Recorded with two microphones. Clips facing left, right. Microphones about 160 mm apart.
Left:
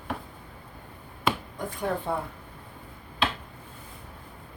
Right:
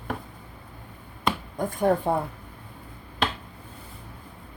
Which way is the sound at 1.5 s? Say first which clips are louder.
Right 7 dB; 45° right (ahead or behind).